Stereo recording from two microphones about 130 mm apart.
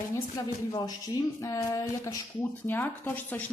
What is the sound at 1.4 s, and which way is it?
Speech, 25° left (ahead or behind).